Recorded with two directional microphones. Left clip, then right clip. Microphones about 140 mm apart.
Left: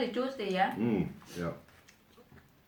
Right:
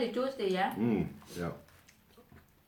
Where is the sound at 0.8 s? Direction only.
25° right (ahead or behind).